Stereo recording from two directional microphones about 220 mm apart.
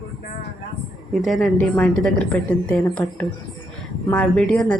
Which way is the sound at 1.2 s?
Centre (ahead or behind).